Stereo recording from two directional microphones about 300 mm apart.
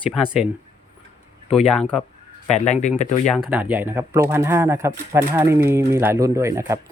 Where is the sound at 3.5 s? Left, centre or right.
Centre.